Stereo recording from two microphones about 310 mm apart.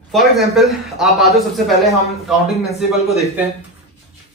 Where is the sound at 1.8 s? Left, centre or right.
Centre.